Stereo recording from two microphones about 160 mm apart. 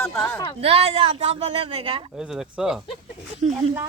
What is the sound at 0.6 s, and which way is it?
A woman's voice, 40° right (ahead or behind).